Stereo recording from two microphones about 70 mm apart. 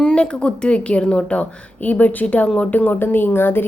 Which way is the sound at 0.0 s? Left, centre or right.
Centre.